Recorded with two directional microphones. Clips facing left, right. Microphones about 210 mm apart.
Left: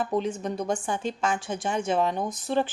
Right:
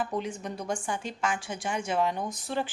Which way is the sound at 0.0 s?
25° left (ahead or behind).